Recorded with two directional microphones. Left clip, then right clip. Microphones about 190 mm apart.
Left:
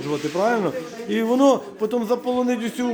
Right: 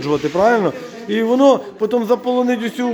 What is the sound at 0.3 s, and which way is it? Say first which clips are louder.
Speech: right 6 dB; 15° right (ahead or behind).